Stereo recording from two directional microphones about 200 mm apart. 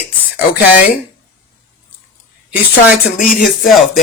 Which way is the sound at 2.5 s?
5° right (ahead or behind).